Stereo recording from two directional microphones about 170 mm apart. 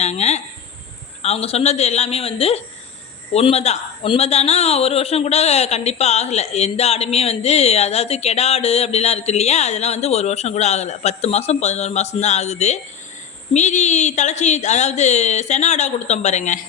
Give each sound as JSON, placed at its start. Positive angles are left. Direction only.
{"t": 0.0, "sound": "speech", "side_deg": 40}